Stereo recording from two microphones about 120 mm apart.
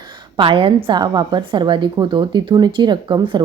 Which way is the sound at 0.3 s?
45° right (ahead or behind).